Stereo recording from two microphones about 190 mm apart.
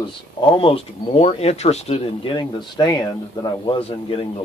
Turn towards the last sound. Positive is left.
turn(degrees=30)  # may be behind; listen again after turning